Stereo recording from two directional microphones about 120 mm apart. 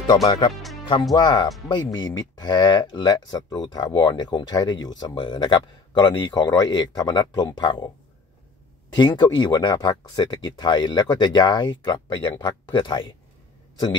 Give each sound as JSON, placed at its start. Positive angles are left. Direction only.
{"t": 0.0, "sound": "speech", "side_deg": 30}
{"t": 8.9, "sound": "speech", "side_deg": 40}